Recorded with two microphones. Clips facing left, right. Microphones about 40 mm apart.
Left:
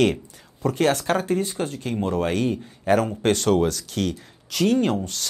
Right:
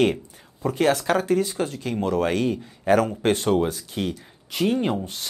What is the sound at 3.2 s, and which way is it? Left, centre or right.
Speech, right.